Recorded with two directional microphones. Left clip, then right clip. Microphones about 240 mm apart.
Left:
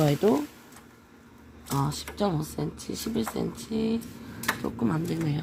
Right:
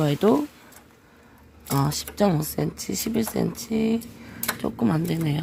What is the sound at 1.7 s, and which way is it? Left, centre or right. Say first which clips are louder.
Speech: right 4 dB; right.